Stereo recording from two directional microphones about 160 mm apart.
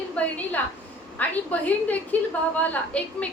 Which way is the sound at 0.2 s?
10° left (ahead or behind).